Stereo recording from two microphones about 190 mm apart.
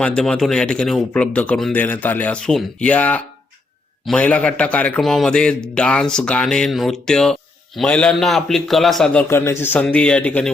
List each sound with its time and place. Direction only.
0.0 s a man's voice: 5° left (ahead or behind)
9.2 s a man's voice: 15° left (ahead or behind)